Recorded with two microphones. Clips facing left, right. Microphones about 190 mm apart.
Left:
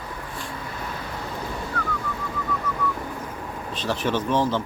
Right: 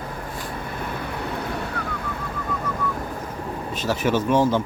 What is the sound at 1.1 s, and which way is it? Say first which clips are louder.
Vehicle: right 4 dB; 65° right (ahead or behind).